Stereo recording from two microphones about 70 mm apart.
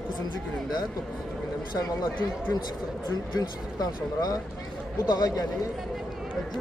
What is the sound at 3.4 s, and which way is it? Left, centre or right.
A man's voice, left.